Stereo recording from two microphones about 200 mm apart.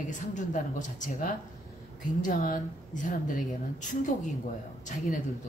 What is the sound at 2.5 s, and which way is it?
Speech, 40° left (ahead or behind).